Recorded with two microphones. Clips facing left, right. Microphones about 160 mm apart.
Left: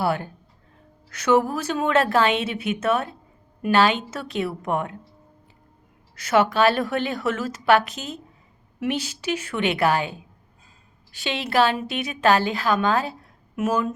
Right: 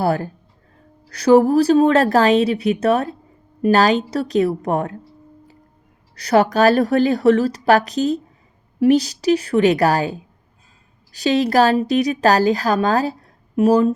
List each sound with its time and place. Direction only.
0.0 s a woman's voice: 40° right (ahead or behind)
6.1 s a woman's voice: 35° right (ahead or behind)